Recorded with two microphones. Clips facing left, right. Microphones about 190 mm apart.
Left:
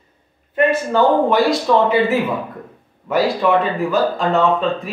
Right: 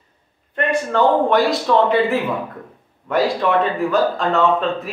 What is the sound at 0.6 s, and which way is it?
Speech, 5° left (ahead or behind).